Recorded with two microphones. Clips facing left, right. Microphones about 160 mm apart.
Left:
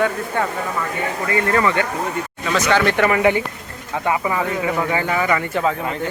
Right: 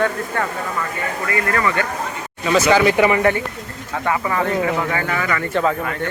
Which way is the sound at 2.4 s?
5° right (ahead or behind).